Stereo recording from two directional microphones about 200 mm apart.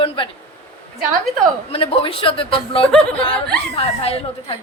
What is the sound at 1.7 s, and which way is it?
A woman's voice, 25° left (ahead or behind).